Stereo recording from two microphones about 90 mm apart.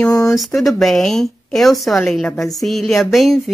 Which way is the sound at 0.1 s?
40° left (ahead or behind).